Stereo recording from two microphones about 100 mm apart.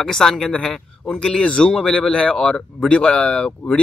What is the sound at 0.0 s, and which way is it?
Speech, 5° left (ahead or behind).